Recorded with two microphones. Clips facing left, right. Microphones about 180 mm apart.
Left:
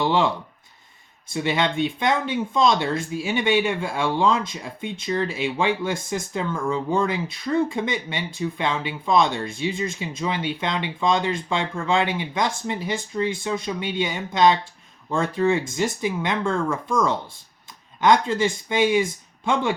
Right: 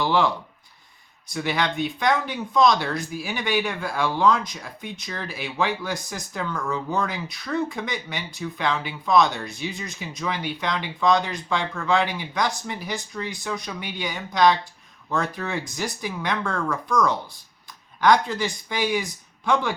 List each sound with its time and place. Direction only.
0.0 s speech: 25° left (ahead or behind)
1.3 s speech: 25° left (ahead or behind)